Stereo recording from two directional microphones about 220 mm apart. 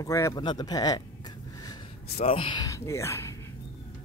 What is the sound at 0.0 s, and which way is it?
Speech, 15° left (ahead or behind).